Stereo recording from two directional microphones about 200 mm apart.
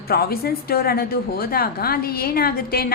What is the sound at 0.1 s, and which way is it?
A woman's voice, 50° left (ahead or behind).